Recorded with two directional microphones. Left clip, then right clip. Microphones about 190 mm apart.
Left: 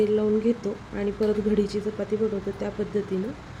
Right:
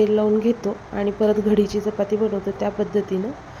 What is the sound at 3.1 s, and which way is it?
Speech, 20° right (ahead or behind).